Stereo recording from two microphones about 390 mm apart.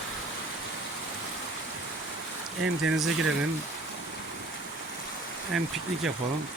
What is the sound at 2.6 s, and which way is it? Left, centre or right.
Speech, right.